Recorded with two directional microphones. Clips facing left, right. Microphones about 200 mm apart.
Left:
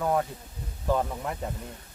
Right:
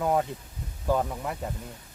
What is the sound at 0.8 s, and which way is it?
Speech, 5° right (ahead or behind).